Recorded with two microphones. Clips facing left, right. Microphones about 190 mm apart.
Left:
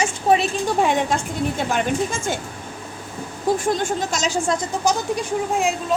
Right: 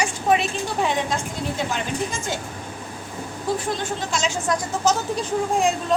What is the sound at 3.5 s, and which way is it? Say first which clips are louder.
Speech: left 5 dB; 50° left (ahead or behind).